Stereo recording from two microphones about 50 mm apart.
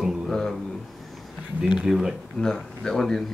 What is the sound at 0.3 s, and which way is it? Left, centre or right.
Speech, centre.